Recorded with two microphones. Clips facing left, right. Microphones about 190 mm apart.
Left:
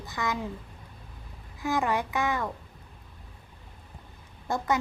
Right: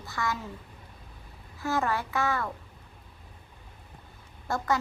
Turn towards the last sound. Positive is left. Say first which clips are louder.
# left 1 dB
turn(degrees=20)  # may be behind; listen again after turning